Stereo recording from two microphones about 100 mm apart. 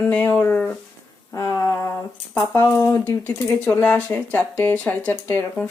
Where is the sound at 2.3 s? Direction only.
20° left (ahead or behind).